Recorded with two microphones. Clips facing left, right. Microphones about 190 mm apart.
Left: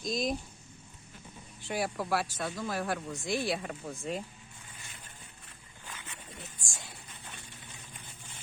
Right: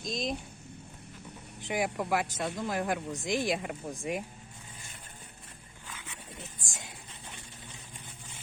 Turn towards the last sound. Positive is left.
turn(degrees=-20)  # may be behind; listen again after turning